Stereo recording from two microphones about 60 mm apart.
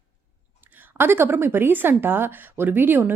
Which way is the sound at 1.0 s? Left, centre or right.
Right.